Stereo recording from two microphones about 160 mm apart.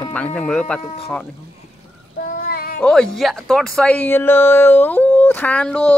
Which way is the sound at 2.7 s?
5° left (ahead or behind).